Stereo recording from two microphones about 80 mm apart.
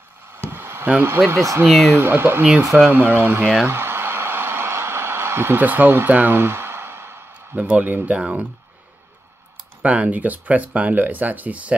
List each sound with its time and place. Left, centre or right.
0.5 s a sound: right
0.8 s speech: right
1.3 s speech: right
1.7 s speech: centre
2.0 s speech: right
3.6 s a sound: right
7.5 s speech: centre
9.8 s speech: centre